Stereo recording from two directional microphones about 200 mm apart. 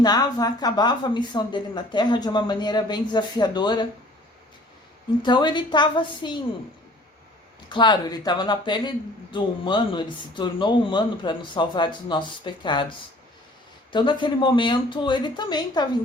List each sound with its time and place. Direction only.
0.0 s speech: 20° left (ahead or behind)
5.2 s speech: 20° left (ahead or behind)
7.7 s speech: 25° left (ahead or behind)
13.9 s speech: 25° left (ahead or behind)